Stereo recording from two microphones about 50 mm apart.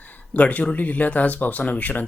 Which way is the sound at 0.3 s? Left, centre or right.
Left.